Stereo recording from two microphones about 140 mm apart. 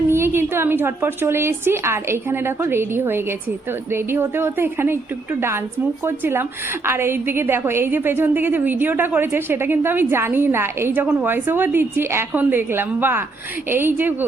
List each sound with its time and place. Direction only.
0.1 s a woman's voice: 15° right (ahead or behind)